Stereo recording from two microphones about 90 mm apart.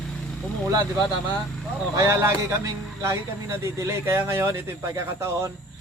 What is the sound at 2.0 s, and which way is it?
A man's voice, 30° right (ahead or behind).